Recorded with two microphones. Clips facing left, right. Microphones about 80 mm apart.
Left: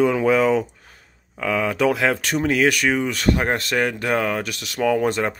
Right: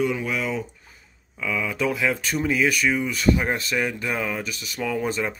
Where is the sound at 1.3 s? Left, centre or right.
Left.